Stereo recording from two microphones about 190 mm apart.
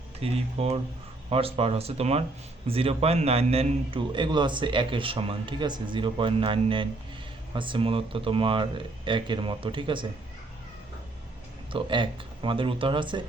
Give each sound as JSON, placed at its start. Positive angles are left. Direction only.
{"t": 0.2, "sound": "a man's voice", "side_deg": -30}
{"t": 11.7, "sound": "a man's voice", "side_deg": -25}